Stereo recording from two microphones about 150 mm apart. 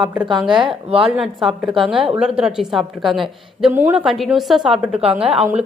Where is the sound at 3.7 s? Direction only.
15° right (ahead or behind).